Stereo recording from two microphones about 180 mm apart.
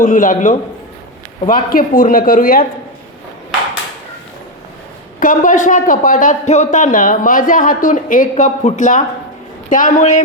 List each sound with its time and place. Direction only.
0.0 s a man's voice: 45° left (ahead or behind)
5.2 s a man's voice: 45° left (ahead or behind)